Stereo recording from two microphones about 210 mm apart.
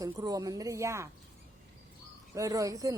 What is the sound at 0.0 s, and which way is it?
Speech, 15° right (ahead or behind).